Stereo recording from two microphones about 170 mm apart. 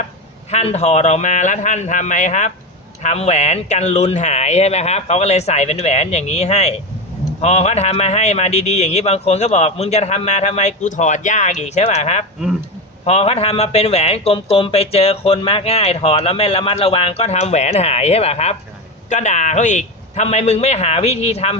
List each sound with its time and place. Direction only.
0.5 s a man's voice: 40° left (ahead or behind)